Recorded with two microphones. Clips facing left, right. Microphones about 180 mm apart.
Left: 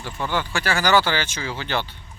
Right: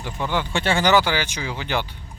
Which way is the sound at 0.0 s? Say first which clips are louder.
Right 1 dB; 15° right (ahead or behind).